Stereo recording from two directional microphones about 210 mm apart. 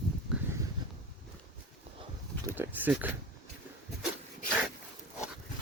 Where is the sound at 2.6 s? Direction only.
10° right (ahead or behind).